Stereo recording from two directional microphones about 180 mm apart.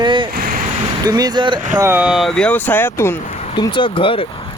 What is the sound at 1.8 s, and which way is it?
Speech, 10° right (ahead or behind).